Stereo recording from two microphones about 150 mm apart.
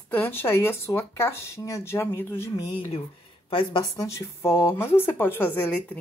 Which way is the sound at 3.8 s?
20° left (ahead or behind).